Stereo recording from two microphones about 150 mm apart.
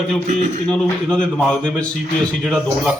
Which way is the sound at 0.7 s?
5° left (ahead or behind).